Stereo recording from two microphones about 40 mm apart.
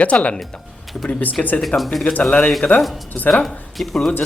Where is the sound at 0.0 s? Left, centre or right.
Left.